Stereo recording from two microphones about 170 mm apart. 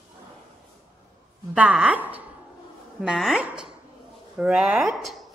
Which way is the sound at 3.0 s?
5° right (ahead or behind).